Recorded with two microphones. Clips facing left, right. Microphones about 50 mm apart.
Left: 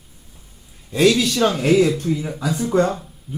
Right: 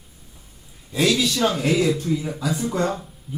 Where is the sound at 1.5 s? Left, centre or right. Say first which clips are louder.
Left 6 dB; left.